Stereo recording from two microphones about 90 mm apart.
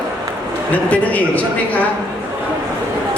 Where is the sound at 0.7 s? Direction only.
15° left (ahead or behind).